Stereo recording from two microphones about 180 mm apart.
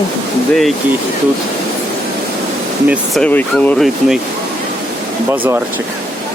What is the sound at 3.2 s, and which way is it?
Speech, 5° left (ahead or behind).